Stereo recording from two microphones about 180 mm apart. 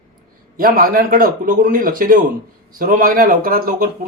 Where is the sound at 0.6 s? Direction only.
50° right (ahead or behind).